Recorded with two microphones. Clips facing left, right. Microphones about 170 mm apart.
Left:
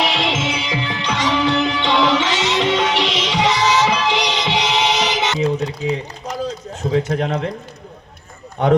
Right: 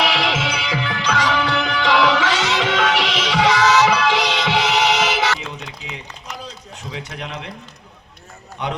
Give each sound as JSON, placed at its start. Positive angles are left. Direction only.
{"t": 0.0, "sound": "music", "side_deg": 25}
{"t": 5.4, "sound": "a sound", "side_deg": 35}
{"t": 6.7, "sound": "a man's voice", "side_deg": 45}
{"t": 8.6, "sound": "a man's voice", "side_deg": 50}